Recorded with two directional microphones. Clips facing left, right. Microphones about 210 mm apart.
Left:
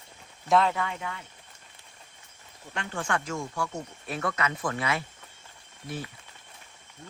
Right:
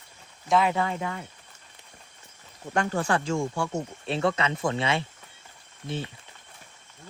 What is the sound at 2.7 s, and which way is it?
Speech, 40° right (ahead or behind).